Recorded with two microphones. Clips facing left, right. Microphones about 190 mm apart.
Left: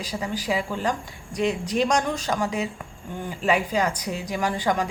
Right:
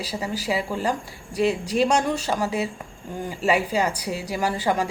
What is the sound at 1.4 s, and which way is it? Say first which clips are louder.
Speech: right 2 dB; 35° right (ahead or behind).